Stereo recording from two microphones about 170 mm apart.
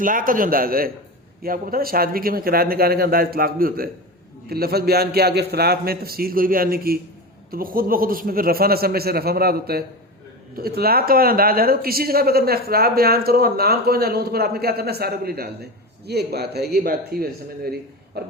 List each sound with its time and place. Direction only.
0.0 s speech: 55° right (ahead or behind)